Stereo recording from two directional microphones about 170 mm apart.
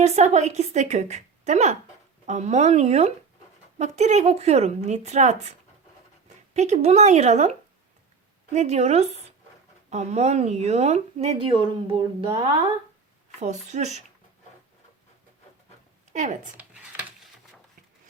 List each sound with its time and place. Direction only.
0.0 s a woman's voice: 40° right (ahead or behind)
8.5 s speech: 40° right (ahead or behind)
13.4 s a woman's voice: 45° right (ahead or behind)
16.1 s a woman's voice: 45° right (ahead or behind)
16.6 s a sound: 10° right (ahead or behind)